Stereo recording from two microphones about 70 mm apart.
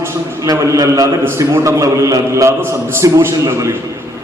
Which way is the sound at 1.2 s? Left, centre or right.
Right.